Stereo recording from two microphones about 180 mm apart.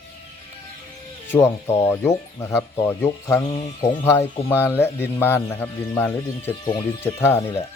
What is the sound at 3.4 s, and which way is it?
Speech, 25° left (ahead or behind).